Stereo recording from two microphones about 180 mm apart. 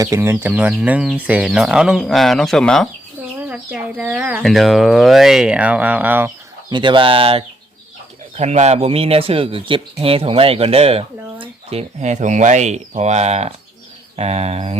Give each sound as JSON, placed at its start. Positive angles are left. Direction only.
{"t": 0.0, "sound": "speech", "side_deg": -15}
{"t": 3.5, "sound": "speech", "side_deg": -5}
{"t": 6.7, "sound": "speech", "side_deg": -25}